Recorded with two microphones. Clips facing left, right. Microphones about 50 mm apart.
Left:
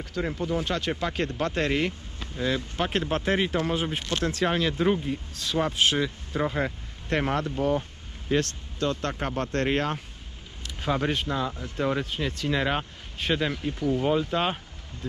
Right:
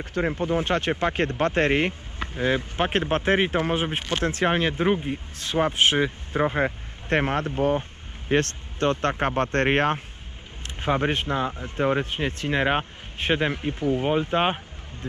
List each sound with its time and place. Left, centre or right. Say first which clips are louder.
0.0 s speech: right 4 dB; right
8.3 s speech: right 3 dB; right